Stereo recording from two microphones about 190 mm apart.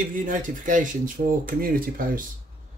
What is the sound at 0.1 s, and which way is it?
Speech, 45° right (ahead or behind).